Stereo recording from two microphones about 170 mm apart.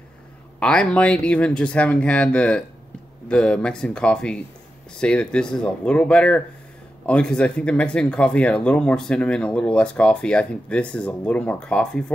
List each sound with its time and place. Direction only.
0.6 s speech: 5° left (ahead or behind)